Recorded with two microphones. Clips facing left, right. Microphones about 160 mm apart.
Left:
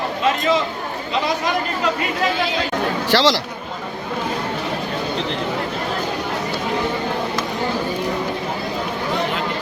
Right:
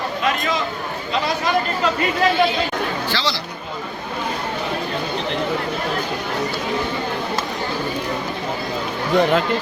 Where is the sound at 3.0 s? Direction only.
85° left.